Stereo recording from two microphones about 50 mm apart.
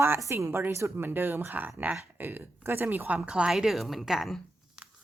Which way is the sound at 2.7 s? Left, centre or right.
Right.